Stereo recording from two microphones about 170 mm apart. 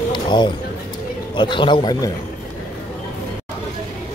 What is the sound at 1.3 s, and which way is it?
Speech, 30° left (ahead or behind).